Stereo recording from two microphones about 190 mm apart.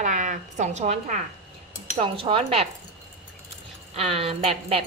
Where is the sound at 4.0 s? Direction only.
30° right (ahead or behind).